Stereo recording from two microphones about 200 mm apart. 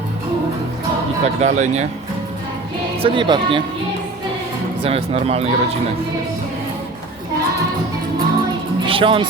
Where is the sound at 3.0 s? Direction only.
25° right (ahead or behind).